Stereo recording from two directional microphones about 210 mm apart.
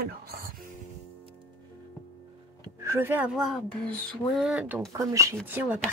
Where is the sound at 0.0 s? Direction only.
45° right (ahead or behind).